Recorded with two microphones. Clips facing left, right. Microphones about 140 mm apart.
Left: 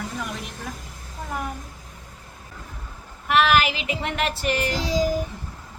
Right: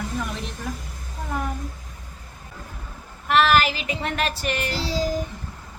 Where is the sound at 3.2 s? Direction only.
15° left (ahead or behind).